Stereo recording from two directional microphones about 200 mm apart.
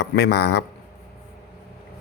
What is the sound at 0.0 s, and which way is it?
Speech, 55° left (ahead or behind).